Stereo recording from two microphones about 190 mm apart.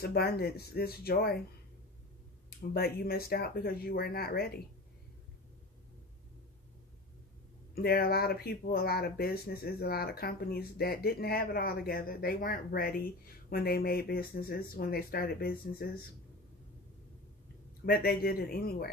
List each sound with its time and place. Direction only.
0.0 s speech: 55° left (ahead or behind)
2.7 s speech: 55° left (ahead or behind)
7.7 s speech: 50° left (ahead or behind)
17.8 s speech: 55° left (ahead or behind)